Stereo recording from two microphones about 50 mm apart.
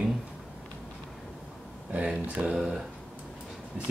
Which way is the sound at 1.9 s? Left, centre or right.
Right.